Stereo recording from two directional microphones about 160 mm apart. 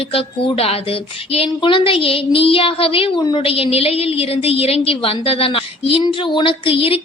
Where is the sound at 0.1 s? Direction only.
35° left (ahead or behind).